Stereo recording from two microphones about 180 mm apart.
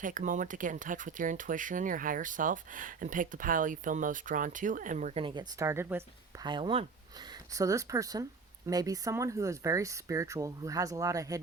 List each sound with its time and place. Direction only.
0.0 s speech: 45° right (ahead or behind)
5.2 s speech: 25° right (ahead or behind)
6.4 s speech: 25° right (ahead or behind)